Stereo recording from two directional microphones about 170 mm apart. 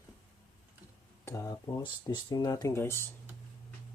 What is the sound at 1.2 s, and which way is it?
Speech, 20° left (ahead or behind).